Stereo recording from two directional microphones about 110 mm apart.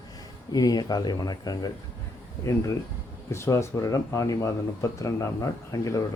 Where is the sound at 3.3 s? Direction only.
25° left (ahead or behind).